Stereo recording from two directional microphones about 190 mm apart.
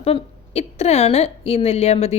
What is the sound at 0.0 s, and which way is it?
A woman's voice, 30° left (ahead or behind).